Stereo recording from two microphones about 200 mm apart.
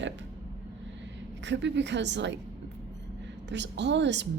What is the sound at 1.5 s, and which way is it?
Speech, 60° right (ahead or behind).